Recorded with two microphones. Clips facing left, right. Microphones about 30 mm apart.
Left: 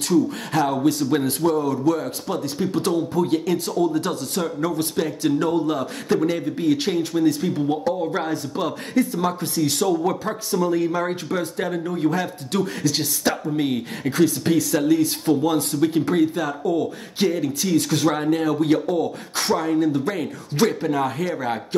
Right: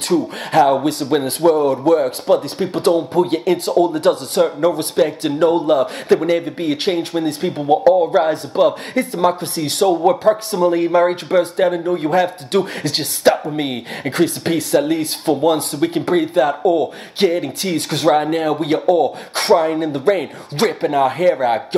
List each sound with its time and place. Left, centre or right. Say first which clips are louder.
0.1 s speech: right 4 dB; right